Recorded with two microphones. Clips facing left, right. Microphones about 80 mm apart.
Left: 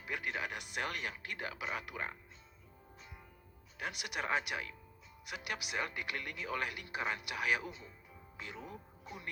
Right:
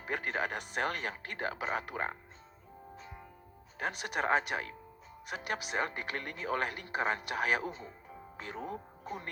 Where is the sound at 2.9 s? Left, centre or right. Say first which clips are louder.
Right 6 dB; right.